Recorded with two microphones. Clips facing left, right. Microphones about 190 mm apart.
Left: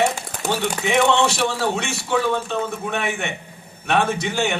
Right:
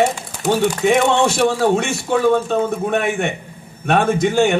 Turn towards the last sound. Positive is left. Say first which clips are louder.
# right 7 dB
turn(degrees=-50)  # may be behind; listen again after turning